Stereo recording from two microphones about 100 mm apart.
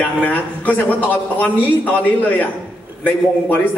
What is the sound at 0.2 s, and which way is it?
A man's voice, 15° left (ahead or behind).